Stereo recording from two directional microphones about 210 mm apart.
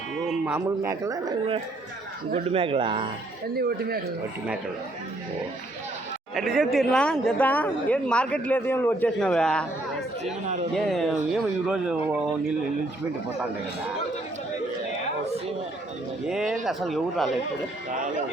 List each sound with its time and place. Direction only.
0.3 s speech: 10° right (ahead or behind); by 3.1 s 25° right (ahead or behind)
3.5 s a man's voice: 50° right (ahead or behind)
6.3 s speech: centre (ahead or behind)
10.4 s speech: 35° right (ahead or behind)
10.8 s speech: centre (ahead or behind)
16.3 s speech: 5° right (ahead or behind)